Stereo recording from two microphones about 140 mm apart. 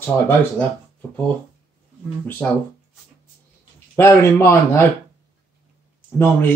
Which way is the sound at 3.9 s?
20° left (ahead or behind).